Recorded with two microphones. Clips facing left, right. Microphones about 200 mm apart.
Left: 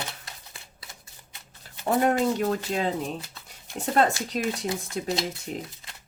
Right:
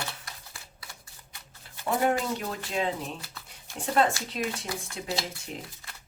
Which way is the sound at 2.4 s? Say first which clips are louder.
Left 5 dB; 40° left (ahead or behind).